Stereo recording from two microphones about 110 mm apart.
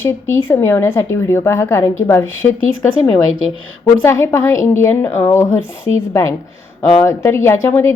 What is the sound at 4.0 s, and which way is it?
A woman's voice, 20° left (ahead or behind).